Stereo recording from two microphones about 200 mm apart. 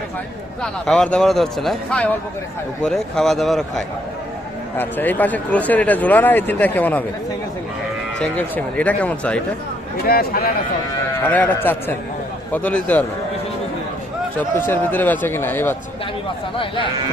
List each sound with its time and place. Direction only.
0.6 s a man's voice: 5° left (ahead or behind)
8.2 s speech: 5° left (ahead or behind)
10.1 s speech: 50° left (ahead or behind)
11.3 s speech: 10° left (ahead or behind)
14.3 s speech: 10° left (ahead or behind)